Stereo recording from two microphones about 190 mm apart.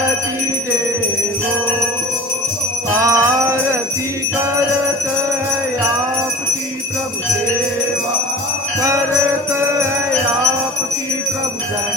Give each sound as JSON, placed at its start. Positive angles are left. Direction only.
{"t": 2.9, "sound": "jingle bell", "side_deg": -15}